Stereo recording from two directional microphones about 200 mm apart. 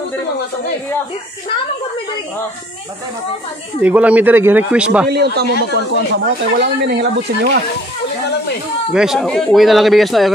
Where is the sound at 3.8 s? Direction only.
5° right (ahead or behind).